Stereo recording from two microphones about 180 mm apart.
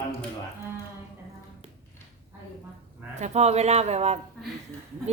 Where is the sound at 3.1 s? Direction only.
40° right (ahead or behind).